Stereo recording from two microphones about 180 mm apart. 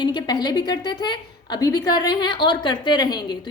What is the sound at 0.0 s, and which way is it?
A woman's voice, 25° left (ahead or behind).